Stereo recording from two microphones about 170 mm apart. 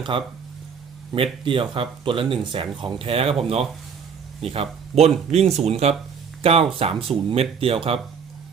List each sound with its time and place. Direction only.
0.1 s speech: 30° right (ahead or behind)